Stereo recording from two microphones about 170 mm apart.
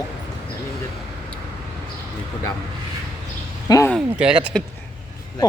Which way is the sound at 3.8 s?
5° right (ahead or behind).